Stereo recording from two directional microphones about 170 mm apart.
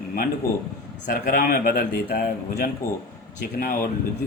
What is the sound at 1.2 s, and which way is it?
A man's voice, 55° left (ahead or behind).